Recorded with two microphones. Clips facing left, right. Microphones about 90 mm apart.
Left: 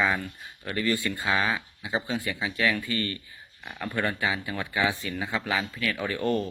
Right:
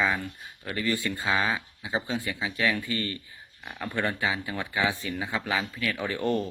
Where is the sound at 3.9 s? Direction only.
15° right (ahead or behind).